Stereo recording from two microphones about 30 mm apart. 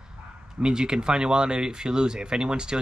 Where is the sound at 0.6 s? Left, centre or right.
Right.